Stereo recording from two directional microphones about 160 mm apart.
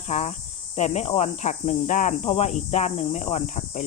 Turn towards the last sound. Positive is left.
turn(degrees=50)  # may be behind; listen again after turning